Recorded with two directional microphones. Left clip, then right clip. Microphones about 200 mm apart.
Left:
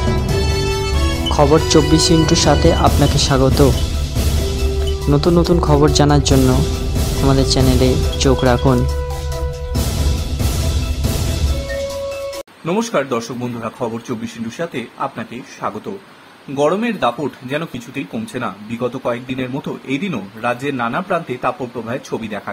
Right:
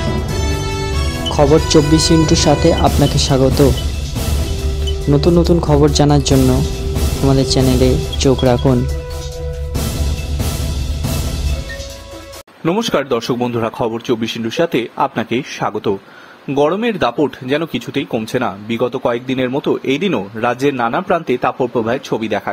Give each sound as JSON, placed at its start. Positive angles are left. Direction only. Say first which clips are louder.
{"t": 1.3, "sound": "speech", "louder": "right 1 dB", "side_deg": 0}
{"t": 5.1, "sound": "speech", "louder": "right 2 dB", "side_deg": 0}
{"t": 12.6, "sound": "speech", "louder": "right 2 dB", "side_deg": -35}